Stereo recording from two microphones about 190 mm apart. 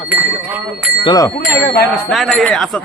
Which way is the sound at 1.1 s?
20° left (ahead or behind).